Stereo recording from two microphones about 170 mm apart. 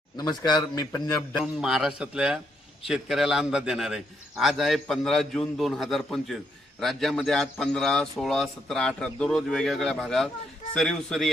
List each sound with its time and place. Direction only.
0.2 s a man's voice: 25° left (ahead or behind)
1.4 s a man's voice: centre (ahead or behind)